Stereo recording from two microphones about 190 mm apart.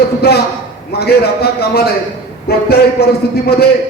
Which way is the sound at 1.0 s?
55° left (ahead or behind).